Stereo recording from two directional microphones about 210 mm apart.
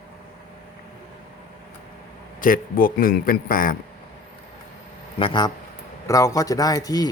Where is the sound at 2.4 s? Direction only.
40° left (ahead or behind).